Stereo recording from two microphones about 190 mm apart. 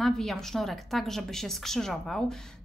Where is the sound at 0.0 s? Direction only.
Centre (ahead or behind).